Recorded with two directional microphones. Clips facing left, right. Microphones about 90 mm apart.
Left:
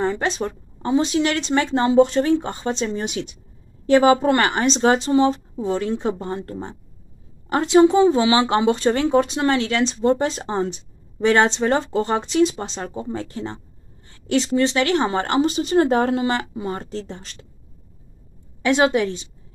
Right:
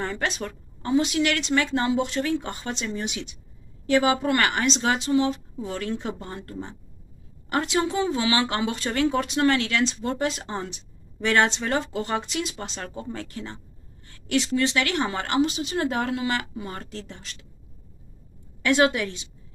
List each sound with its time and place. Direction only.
0.0 s speech: 20° left (ahead or behind)
3.0 s speech: 40° left (ahead or behind)
18.6 s speech: 25° left (ahead or behind)